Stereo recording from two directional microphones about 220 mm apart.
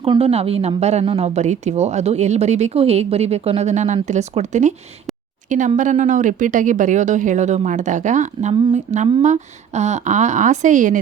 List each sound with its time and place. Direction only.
0.0 s a woman's voice: 25° right (ahead or behind)